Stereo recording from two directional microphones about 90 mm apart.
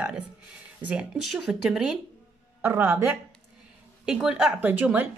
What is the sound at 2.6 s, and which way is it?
Speech, 20° right (ahead or behind).